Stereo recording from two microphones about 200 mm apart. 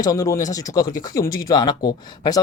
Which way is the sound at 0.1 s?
15° left (ahead or behind).